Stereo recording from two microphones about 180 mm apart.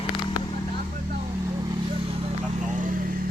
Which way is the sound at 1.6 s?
30° right (ahead or behind).